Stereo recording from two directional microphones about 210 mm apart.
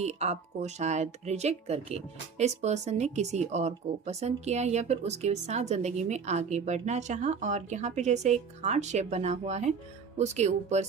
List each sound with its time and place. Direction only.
0.0 s speech: 30° right (ahead or behind)